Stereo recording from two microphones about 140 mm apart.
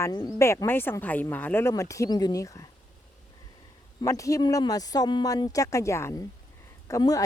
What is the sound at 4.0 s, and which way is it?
Speech, 25° left (ahead or behind).